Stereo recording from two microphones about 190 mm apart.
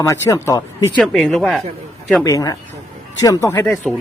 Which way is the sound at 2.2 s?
20° left (ahead or behind).